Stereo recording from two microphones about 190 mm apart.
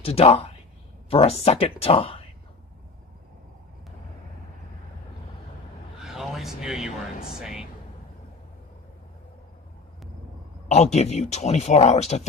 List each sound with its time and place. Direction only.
0.0 s speech: 30° left (ahead or behind)
5.9 s a sound: centre (ahead or behind)
7.2 s music: 5° right (ahead or behind)
10.7 s speech: 35° left (ahead or behind)